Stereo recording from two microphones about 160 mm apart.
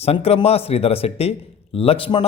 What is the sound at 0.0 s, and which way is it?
A man's voice, 40° left (ahead or behind).